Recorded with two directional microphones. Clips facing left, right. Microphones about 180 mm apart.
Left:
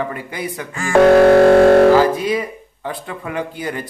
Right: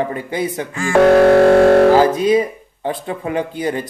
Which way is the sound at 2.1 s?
20° right (ahead or behind).